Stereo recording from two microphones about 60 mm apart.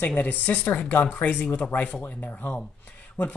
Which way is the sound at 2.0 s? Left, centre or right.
Left.